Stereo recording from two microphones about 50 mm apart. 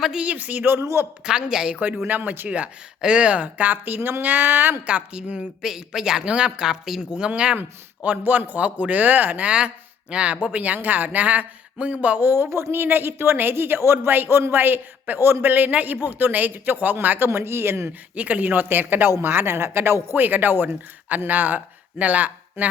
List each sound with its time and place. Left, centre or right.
0.2 s speech: right
0.7 s speech: right
1.2 s speech: centre
2.0 s speech: right
3.0 s speech: centre; by 4.8 s right
4.9 s speech: right
5.6 s speech: centre
7.2 s speech: right
9.5 s speech: centre
10.5 s speech: right
12.2 s speech: right
17.2 s speech: right
18.1 s speech: right
20.1 s speech: right